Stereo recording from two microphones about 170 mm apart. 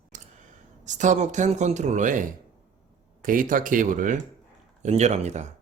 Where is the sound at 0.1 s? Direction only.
45° right (ahead or behind).